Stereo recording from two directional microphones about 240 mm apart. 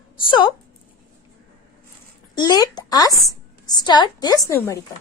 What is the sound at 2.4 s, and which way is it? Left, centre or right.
A woman's voice, centre.